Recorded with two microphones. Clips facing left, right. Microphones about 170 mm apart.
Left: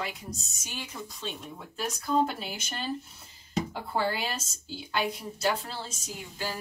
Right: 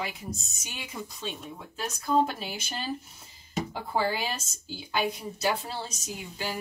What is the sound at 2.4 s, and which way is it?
Speech, 5° right (ahead or behind).